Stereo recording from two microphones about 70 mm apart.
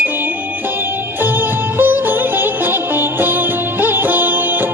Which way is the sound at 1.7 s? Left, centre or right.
Right.